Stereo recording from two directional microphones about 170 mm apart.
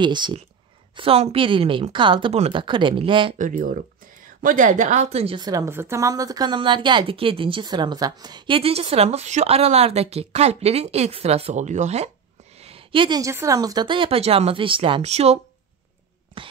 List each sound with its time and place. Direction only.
0.0 s speech: 25° right (ahead or behind)
3.3 s a woman's voice: 50° right (ahead or behind)